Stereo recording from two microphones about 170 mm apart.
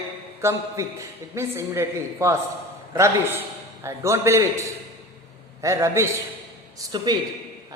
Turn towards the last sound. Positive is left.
turn(degrees=-25)  # may be behind; listen again after turning